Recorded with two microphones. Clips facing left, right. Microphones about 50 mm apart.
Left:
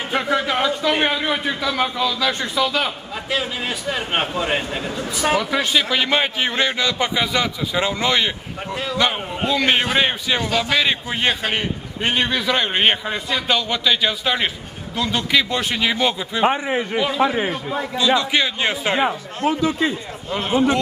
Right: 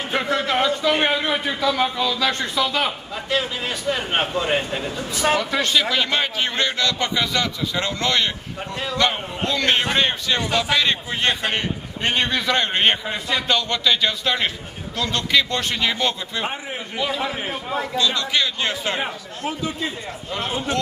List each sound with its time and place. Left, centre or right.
0.1 s a man's voice: centre
17.7 s a man's voice: centre
18.9 s speech: left
20.2 s a man's voice: centre